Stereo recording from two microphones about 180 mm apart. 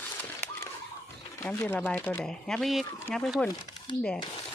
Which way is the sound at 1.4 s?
10° left (ahead or behind).